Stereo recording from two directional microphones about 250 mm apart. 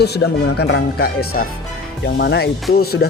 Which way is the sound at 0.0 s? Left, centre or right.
Left.